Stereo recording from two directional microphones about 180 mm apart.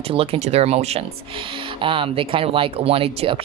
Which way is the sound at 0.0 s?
30° right (ahead or behind).